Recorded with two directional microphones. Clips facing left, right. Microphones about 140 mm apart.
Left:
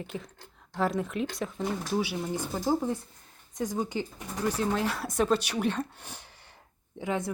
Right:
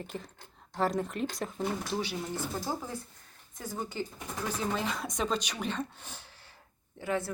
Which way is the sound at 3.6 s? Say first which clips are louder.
Left 6 dB; 15° left (ahead or behind).